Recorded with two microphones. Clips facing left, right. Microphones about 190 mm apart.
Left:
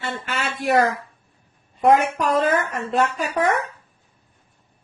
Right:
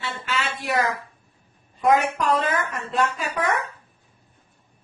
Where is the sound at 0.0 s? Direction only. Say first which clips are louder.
Left 1 dB; 50° left (ahead or behind).